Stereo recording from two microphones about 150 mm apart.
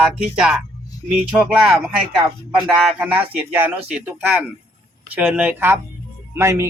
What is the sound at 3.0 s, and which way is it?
Speech, 15° right (ahead or behind).